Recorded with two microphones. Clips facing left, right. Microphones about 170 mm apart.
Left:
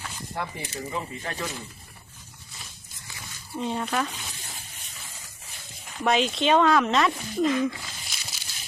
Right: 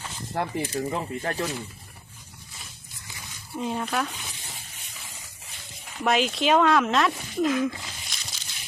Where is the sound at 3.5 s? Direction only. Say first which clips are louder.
Even; 5° right (ahead or behind).